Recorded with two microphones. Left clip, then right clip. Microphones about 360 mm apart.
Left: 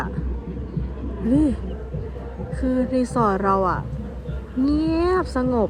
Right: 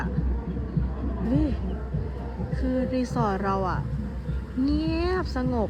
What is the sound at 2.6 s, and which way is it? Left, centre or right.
Speech, left.